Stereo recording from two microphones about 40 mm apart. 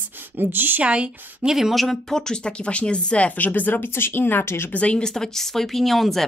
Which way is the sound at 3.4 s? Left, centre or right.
Left.